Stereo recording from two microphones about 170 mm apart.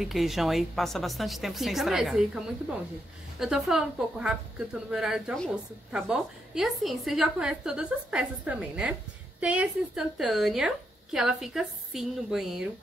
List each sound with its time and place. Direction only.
0.0 s a woman's voice: centre (ahead or behind)